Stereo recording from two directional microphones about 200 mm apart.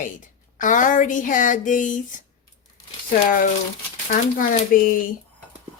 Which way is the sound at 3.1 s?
45° left (ahead or behind).